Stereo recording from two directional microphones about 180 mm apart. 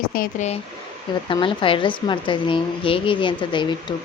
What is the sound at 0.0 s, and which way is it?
Speech, 55° left (ahead or behind).